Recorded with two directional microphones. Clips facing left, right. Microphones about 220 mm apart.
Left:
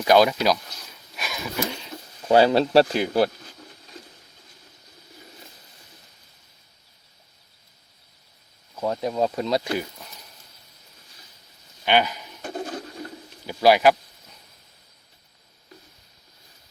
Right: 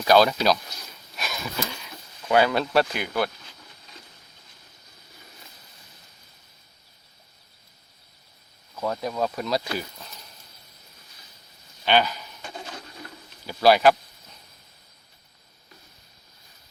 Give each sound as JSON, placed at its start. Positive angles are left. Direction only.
{"t": 0.0, "sound": "speech", "side_deg": 15}
{"t": 1.1, "sound": "a sound", "side_deg": 5}
{"t": 1.6, "sound": "speech", "side_deg": 30}
{"t": 8.7, "sound": "speech", "side_deg": 20}
{"t": 11.9, "sound": "speech", "side_deg": 15}
{"t": 12.4, "sound": "a sound", "side_deg": 50}
{"t": 13.5, "sound": "speech", "side_deg": 15}